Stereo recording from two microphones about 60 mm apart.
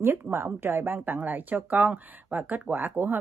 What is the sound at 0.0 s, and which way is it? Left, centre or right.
A woman's voice, right.